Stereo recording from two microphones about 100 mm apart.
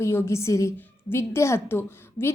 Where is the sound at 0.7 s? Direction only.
20° left (ahead or behind).